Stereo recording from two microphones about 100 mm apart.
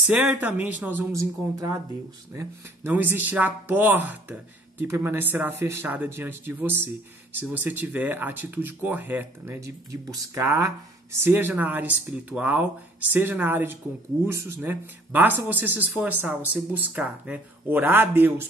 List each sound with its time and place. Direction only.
0.0 s speech: 15° right (ahead or behind)
1.1 s speech: 30° right (ahead or behind)
9.6 s speech: 35° right (ahead or behind)